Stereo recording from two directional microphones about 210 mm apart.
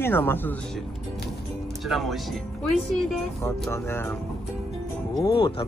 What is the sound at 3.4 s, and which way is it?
Speech, 10° left (ahead or behind).